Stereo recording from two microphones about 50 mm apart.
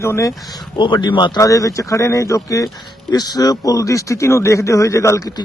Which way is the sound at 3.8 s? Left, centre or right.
Left.